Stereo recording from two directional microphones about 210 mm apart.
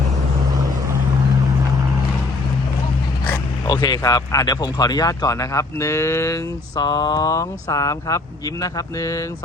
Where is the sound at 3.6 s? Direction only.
20° left (ahead or behind).